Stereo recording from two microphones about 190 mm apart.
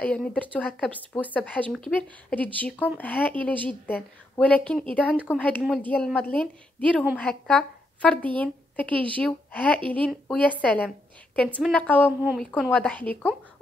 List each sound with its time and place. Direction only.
0.0 s speech: 5° left (ahead or behind)
5.1 s speech: 5° right (ahead or behind)
5.9 s a woman's voice: 5° left (ahead or behind)
12.2 s speech: 5° right (ahead or behind)
12.7 s speech: 5° left (ahead or behind)